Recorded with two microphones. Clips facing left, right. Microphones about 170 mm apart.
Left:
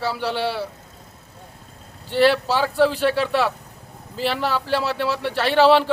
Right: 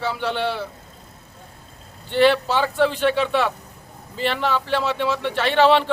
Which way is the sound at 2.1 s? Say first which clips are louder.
Even; 5° left (ahead or behind).